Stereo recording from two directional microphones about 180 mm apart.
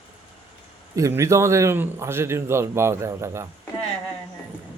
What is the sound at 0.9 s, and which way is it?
A man's voice, 15° right (ahead or behind).